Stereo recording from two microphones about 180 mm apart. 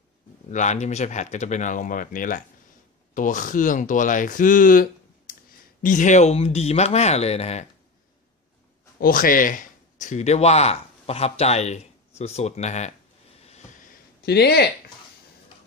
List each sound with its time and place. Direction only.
0.5 s speech: 40° left (ahead or behind)
9.0 s speech: 50° left (ahead or behind)
13.8 s a sound: 65° left (ahead or behind)